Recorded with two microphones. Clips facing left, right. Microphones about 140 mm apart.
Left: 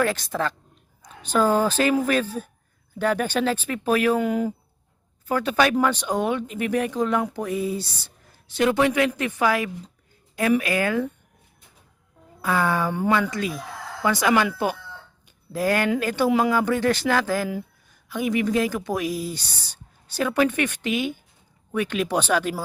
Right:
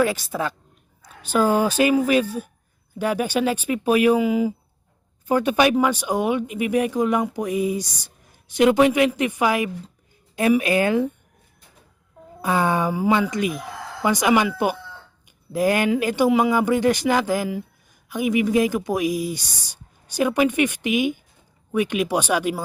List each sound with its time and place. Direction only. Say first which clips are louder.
0.0 s speech: right 2 dB; 10° right (ahead or behind)
5.3 s speech: right 3 dB; 15° right (ahead or behind)
12.4 s speech: right 2 dB; 20° right (ahead or behind)
15.5 s speech: right 3 dB; 15° right (ahead or behind)
16.3 s speech: even; 5° right (ahead or behind)
16.6 s speech: right 3 dB; 15° right (ahead or behind)